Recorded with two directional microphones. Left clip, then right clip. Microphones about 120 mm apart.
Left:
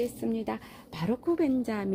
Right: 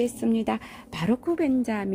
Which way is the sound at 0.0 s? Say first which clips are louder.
Right 5 dB; 45° right (ahead or behind).